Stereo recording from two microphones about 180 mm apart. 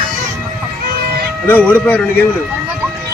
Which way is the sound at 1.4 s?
10° left (ahead or behind).